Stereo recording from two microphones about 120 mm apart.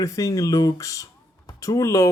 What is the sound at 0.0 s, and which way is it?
Speech, 30° left (ahead or behind).